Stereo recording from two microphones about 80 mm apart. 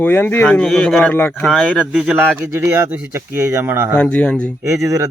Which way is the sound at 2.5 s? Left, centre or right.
Right.